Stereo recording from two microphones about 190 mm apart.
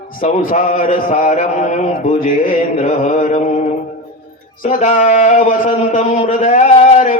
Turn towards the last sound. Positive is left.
turn(degrees=40)  # may be behind; listen again after turning